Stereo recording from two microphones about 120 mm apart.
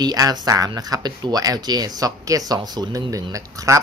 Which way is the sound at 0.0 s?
35° right (ahead or behind).